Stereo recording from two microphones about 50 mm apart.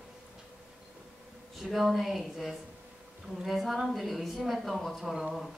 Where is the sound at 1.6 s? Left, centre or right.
Centre.